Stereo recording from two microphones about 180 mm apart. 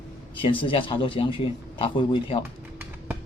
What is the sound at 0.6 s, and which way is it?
Speech, 30° left (ahead or behind).